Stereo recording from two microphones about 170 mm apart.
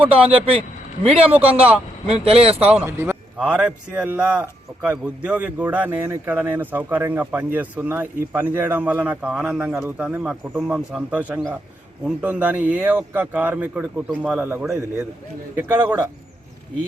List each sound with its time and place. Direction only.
0.2 s speech: 5° right (ahead or behind)
1.0 s speech: 35° right (ahead or behind)
2.6 s speech: 10° right (ahead or behind)